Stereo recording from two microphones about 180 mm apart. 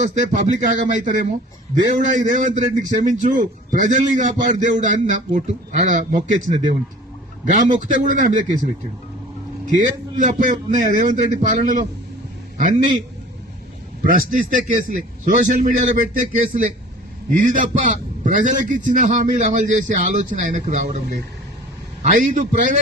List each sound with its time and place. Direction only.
0.0 s a man's voice: 45° right (ahead or behind)
10.2 s a man's voice: 45° right (ahead or behind)
14.8 s a man's voice: 45° right (ahead or behind)